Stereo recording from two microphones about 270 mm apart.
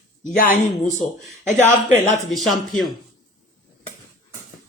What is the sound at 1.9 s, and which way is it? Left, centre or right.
Speech, left.